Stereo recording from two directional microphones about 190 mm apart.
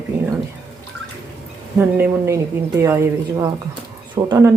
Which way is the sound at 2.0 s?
15° right (ahead or behind).